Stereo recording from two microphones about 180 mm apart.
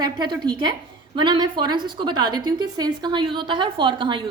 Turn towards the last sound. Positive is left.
turn(degrees=-25)  # may be behind; listen again after turning